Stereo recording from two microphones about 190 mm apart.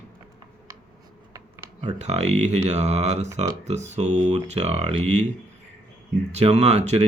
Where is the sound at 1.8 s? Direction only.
35° right (ahead or behind).